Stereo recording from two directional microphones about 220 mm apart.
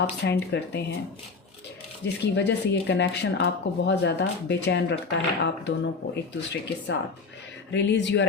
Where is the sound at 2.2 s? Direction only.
50° left (ahead or behind).